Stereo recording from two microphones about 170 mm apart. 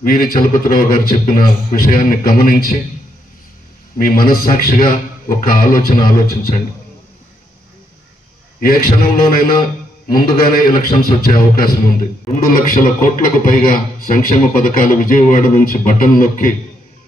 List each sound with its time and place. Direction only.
0.0 s a man's voice: 55° left (ahead or behind)
4.0 s a man's voice: 60° left (ahead or behind)
8.5 s a man's voice: 60° left (ahead or behind)